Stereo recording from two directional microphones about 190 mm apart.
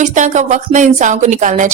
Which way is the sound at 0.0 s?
40° right (ahead or behind).